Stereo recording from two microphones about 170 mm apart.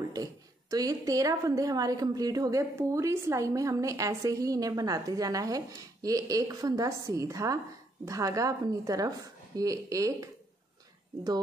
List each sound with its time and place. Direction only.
0.1 s a woman's voice: 20° right (ahead or behind)